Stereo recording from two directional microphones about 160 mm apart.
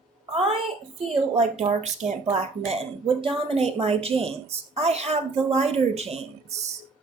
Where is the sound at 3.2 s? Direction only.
35° right (ahead or behind).